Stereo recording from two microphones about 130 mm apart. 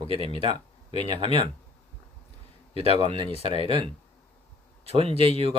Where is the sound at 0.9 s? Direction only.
55° left (ahead or behind).